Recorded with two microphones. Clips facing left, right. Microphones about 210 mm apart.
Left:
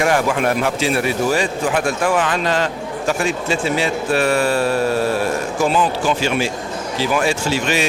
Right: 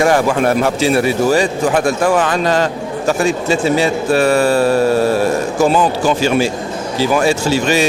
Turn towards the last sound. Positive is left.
turn(degrees=-40)  # may be behind; listen again after turning